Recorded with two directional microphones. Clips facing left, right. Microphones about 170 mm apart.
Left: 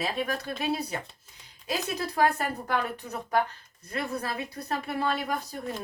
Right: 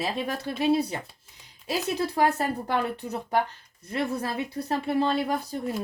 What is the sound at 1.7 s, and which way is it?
Speech, 30° right (ahead or behind).